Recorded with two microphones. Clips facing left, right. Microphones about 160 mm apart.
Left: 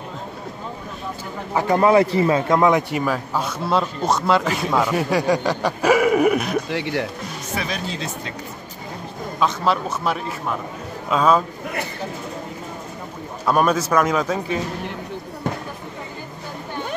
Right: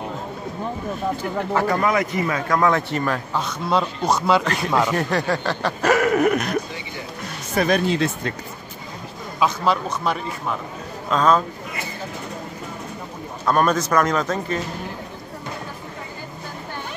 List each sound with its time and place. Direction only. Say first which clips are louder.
1.8 s a man's voice: left 6 dB; 30° left (ahead or behind); by 6.6 s 5° left (ahead or behind)
6.7 s speech: left 10 dB; 75° left (ahead or behind)
7.5 s speech: right 9 dB; 55° right (ahead or behind)
9.4 s a man's voice: even; centre (ahead or behind)
13.5 s a man's voice: left 1 dB; 10° left (ahead or behind)